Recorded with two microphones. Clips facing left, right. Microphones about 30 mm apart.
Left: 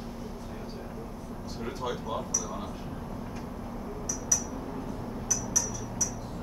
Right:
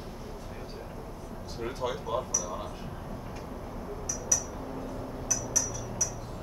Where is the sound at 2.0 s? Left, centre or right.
Centre.